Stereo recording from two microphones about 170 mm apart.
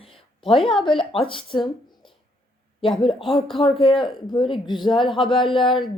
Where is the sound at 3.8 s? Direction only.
30° left (ahead or behind).